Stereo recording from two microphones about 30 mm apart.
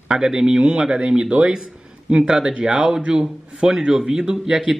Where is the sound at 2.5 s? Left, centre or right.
Right.